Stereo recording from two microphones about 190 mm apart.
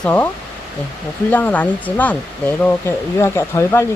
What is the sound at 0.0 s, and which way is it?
Speech, 5° left (ahead or behind).